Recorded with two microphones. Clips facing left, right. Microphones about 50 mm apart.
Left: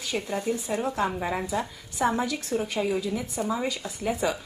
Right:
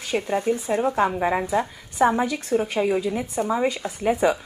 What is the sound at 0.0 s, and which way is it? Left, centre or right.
A woman's voice, right.